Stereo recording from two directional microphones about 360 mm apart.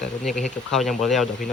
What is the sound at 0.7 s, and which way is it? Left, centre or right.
Speech, centre.